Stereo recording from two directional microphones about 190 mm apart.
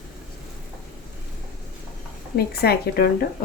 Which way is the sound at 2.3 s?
55° left (ahead or behind).